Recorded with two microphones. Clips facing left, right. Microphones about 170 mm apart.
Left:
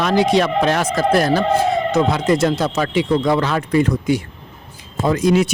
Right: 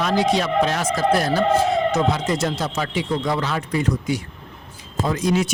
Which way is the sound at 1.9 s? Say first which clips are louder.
Left 4 dB; 55° left (ahead or behind).